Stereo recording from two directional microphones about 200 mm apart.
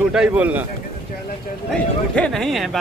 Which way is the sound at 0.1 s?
5° right (ahead or behind).